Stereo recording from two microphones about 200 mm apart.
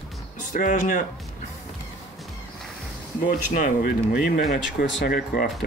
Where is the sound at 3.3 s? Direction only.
40° left (ahead or behind).